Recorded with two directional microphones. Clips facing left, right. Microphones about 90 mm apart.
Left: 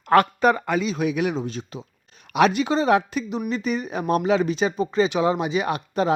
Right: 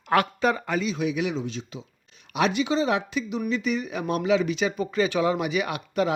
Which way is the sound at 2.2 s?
55° left (ahead or behind).